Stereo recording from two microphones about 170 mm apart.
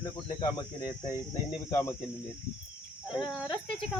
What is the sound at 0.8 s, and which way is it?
Cricket, 20° left (ahead or behind).